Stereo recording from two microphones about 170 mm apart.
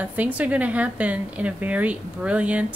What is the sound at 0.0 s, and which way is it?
A woman's voice, 10° right (ahead or behind).